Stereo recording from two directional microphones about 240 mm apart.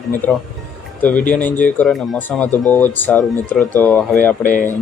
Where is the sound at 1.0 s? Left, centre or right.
Centre.